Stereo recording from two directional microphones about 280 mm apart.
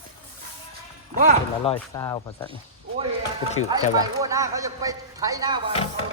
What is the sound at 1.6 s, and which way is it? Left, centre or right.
Speech, centre.